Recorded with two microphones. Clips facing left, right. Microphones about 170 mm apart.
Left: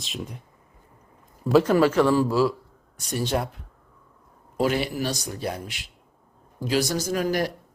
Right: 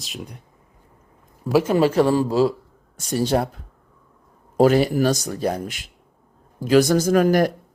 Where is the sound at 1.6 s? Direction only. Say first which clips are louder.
Right 1 dB; 20° right (ahead or behind).